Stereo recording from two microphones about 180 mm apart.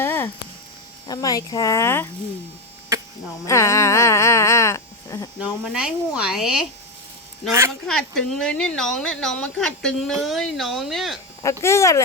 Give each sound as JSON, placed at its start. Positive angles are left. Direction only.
{"t": 0.0, "sound": "a sound", "side_deg": 10}
{"t": 1.0, "sound": "speech", "side_deg": 20}
{"t": 3.4, "sound": "a sound", "side_deg": 15}
{"t": 5.4, "sound": "speech", "side_deg": -5}
{"t": 7.9, "sound": "speech", "side_deg": 0}
{"t": 11.6, "sound": "speech", "side_deg": 15}